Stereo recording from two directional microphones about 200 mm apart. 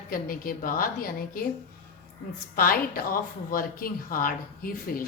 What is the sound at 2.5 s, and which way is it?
A woman's voice, 45° left (ahead or behind).